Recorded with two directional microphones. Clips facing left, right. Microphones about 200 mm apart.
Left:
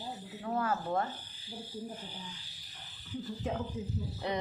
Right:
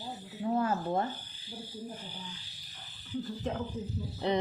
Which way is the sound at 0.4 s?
20° right (ahead or behind).